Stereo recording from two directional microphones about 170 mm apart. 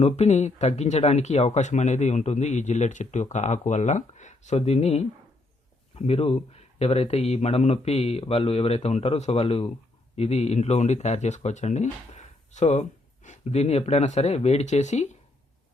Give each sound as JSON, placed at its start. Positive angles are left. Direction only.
{"t": 0.0, "sound": "speech", "side_deg": 40}